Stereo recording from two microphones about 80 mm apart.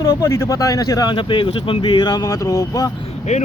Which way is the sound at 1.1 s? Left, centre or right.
Left.